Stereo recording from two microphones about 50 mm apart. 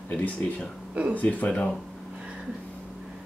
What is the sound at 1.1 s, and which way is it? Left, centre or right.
Speech, left.